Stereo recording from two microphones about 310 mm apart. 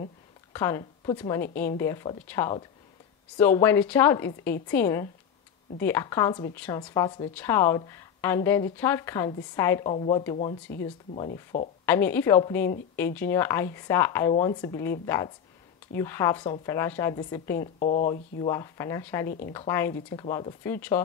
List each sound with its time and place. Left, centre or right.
0.5 s speech: centre
11.8 s speech: centre
17.7 s speech: left
18.5 s speech: centre